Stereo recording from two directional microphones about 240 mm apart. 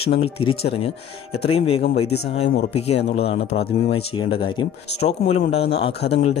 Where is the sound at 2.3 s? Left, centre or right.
Left.